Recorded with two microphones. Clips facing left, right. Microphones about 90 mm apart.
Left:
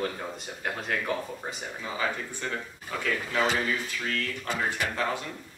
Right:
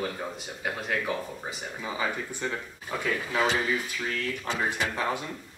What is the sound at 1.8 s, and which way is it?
Speech, 15° right (ahead or behind).